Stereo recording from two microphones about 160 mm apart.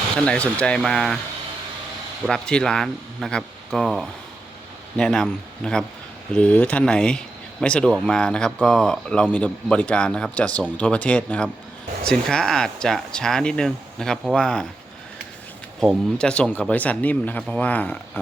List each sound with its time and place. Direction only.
0.2 s speech: 5° left (ahead or behind)
2.2 s speech: 5° left (ahead or behind)
15.8 s speech: centre (ahead or behind)